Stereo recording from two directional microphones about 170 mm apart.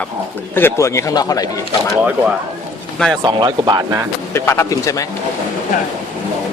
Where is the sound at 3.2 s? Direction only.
30° right (ahead or behind).